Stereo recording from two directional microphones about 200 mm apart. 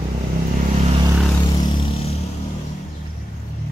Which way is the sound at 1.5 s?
20° left (ahead or behind).